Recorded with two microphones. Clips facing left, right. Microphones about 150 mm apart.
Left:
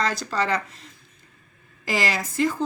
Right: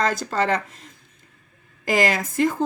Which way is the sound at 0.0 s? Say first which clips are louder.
Right 3 dB; 50° right (ahead or behind).